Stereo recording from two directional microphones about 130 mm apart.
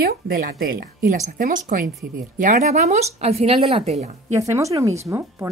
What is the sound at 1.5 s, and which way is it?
Speech, 90° right.